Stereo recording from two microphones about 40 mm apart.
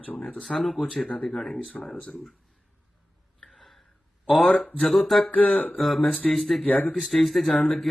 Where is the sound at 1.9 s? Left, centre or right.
Centre.